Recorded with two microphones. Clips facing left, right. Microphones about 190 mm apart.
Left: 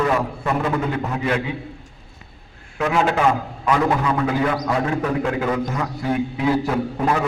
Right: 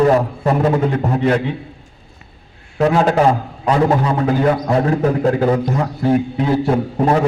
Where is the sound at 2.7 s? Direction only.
35° right (ahead or behind).